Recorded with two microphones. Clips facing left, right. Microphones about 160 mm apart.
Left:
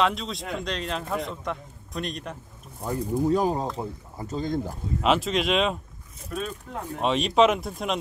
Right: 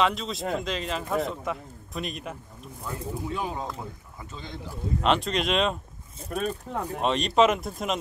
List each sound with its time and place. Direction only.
0.0 s a man's voice: centre (ahead or behind)
2.8 s speech: 40° left (ahead or behind)
5.0 s a man's voice: 5° left (ahead or behind)
6.3 s speech: 50° right (ahead or behind)
7.0 s a man's voice: centre (ahead or behind)